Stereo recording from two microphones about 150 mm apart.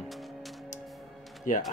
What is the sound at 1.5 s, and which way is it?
Speech, 60° left (ahead or behind).